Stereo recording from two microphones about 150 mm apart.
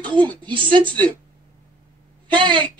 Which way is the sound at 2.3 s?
35° right (ahead or behind).